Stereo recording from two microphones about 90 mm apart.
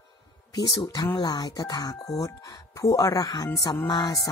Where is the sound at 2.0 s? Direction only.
40° left (ahead or behind).